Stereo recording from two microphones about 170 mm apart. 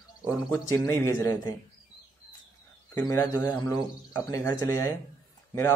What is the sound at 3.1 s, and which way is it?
A man's voice, 20° left (ahead or behind).